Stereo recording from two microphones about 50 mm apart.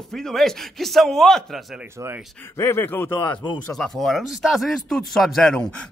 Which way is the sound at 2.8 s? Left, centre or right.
Left.